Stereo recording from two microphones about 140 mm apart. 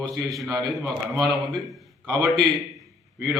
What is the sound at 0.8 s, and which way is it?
Speech, centre (ahead or behind).